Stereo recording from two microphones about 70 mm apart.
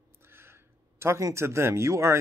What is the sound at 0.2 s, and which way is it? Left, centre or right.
Speech, right.